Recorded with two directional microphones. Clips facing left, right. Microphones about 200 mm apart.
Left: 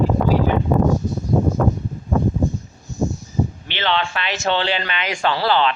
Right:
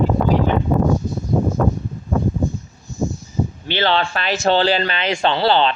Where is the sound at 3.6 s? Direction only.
35° right (ahead or behind).